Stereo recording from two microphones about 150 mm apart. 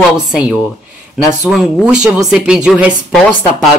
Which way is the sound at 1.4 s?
5° right (ahead or behind).